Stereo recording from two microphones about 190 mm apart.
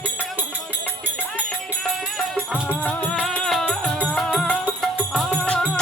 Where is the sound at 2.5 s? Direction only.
5° right (ahead or behind).